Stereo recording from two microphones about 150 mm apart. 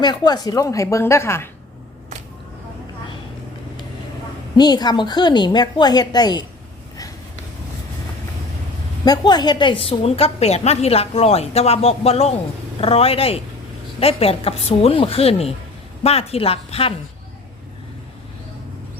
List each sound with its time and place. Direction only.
0.0 s a woman's voice: 30° left (ahead or behind)
4.5 s a woman's voice: 30° left (ahead or behind)
9.0 s a woman's voice: 30° left (ahead or behind)